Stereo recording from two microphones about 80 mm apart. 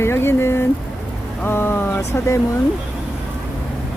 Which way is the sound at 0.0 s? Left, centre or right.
Left.